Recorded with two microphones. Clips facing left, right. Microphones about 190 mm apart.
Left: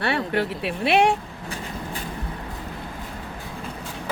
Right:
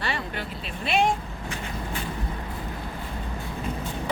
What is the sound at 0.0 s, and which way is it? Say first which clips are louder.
Speech: left 8 dB; 65° left (ahead or behind).